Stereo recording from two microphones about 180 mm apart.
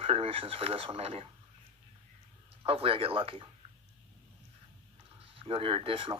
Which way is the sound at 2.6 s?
30° right (ahead or behind).